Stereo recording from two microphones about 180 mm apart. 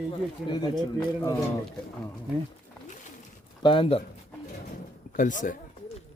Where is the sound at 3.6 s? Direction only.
30° left (ahead or behind).